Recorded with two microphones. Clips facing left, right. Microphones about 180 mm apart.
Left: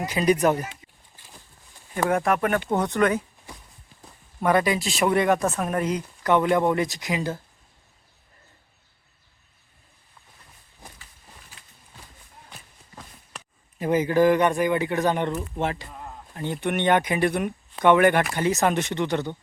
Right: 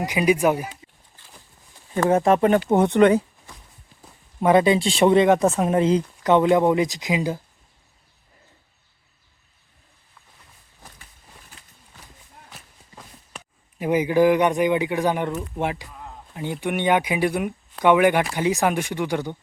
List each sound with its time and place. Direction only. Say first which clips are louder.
0.0 s speech: right 1 dB; 15° right (ahead or behind)
2.0 s speech: right 5 dB; 25° right (ahead or behind)
4.4 s speech: right 5 dB; 20° right (ahead or behind)
13.7 s speech: right 1 dB; 10° right (ahead or behind)